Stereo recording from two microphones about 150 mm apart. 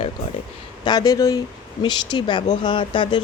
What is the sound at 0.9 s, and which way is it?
Speech, 25° left (ahead or behind).